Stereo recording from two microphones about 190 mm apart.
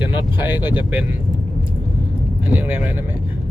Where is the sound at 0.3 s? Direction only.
10° right (ahead or behind).